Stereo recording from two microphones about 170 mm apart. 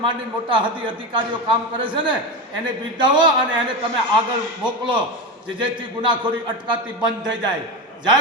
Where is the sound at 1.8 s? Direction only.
30° right (ahead or behind).